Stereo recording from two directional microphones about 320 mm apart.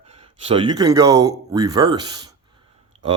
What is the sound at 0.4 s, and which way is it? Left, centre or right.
Speech, centre.